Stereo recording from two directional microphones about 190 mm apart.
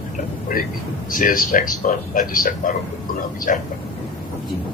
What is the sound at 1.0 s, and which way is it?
A man's voice, 45° left (ahead or behind).